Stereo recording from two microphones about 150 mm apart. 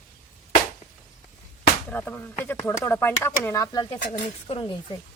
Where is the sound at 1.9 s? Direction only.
15° left (ahead or behind); by 4.7 s 35° left (ahead or behind).